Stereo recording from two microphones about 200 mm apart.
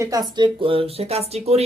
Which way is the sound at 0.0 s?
20° right (ahead or behind).